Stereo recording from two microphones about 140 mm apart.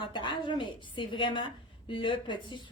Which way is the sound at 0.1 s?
35° left (ahead or behind).